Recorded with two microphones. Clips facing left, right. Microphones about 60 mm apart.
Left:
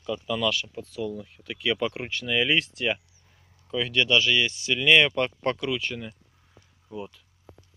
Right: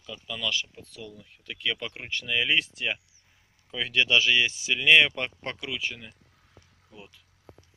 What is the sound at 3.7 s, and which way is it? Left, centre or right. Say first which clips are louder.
Speech: left 1 dB; centre.